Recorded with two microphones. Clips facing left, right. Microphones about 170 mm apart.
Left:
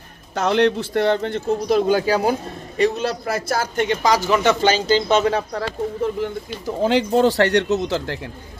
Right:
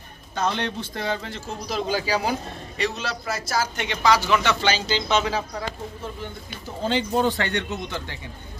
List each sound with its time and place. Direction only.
0.3 s a man's voice: 85° left; by 5.7 s 60° left (ahead or behind)
6.8 s speech: 85° left